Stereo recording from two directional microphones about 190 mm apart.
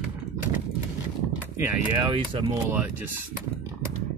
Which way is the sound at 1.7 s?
15° right (ahead or behind).